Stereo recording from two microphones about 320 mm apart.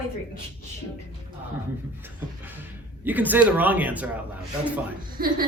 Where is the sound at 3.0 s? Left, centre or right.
Centre.